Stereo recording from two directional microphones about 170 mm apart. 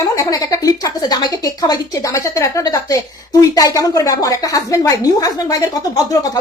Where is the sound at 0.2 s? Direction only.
20° left (ahead or behind).